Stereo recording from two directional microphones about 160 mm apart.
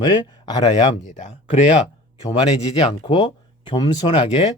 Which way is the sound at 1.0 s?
50° left (ahead or behind).